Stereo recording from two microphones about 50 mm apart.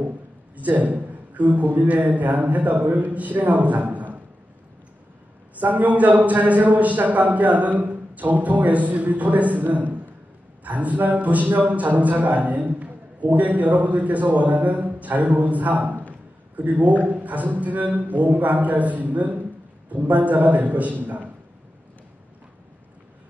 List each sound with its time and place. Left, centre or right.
0.6 s a man's voice: right
5.6 s a man's voice: right